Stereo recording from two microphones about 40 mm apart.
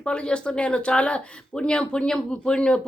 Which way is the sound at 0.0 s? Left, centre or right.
Left.